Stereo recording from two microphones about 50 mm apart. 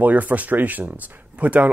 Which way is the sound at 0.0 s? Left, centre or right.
Right.